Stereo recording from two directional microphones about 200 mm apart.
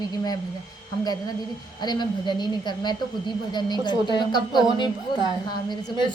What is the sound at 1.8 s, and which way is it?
A woman's voice, 20° left (ahead or behind).